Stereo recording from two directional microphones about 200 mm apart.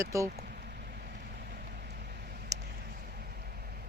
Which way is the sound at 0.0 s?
15° right (ahead or behind).